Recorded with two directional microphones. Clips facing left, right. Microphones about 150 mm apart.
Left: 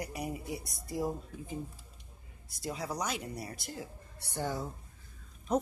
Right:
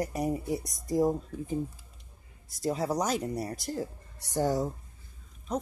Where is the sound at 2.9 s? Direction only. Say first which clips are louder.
Right 7 dB; 40° right (ahead or behind).